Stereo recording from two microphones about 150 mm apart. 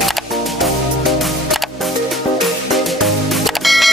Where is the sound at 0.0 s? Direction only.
Centre (ahead or behind).